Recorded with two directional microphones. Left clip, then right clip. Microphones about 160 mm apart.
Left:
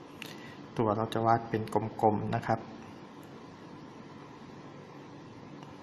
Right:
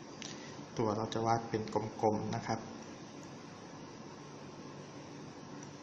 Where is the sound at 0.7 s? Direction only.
30° left (ahead or behind).